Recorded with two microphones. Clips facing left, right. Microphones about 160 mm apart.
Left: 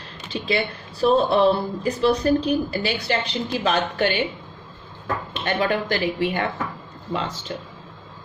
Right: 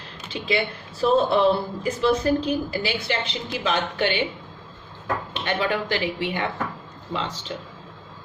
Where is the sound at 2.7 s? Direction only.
40° left (ahead or behind).